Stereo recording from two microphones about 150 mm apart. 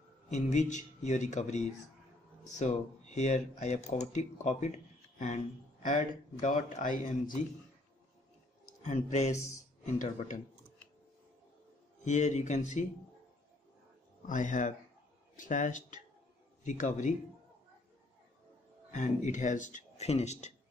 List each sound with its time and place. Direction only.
0.3 s speech: 50° left (ahead or behind)
8.8 s speech: 50° left (ahead or behind)
12.0 s speech: 50° left (ahead or behind)
14.2 s speech: 55° left (ahead or behind)
18.9 s speech: 55° left (ahead or behind)